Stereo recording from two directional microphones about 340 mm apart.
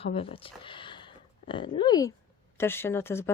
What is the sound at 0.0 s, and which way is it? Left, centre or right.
Speech, centre.